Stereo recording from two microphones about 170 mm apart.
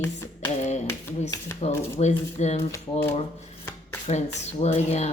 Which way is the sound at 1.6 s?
40° left (ahead or behind).